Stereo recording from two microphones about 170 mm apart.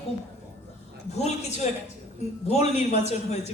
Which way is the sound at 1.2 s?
40° left (ahead or behind).